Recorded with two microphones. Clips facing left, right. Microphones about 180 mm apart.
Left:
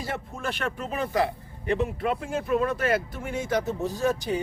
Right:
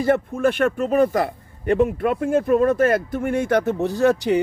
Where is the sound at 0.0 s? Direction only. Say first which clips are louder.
Right 14 dB; 55° right (ahead or behind).